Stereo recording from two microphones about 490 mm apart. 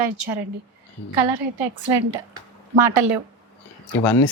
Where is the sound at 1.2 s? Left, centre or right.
Right.